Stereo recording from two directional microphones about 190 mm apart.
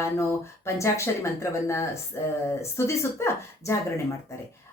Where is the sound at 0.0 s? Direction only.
15° left (ahead or behind).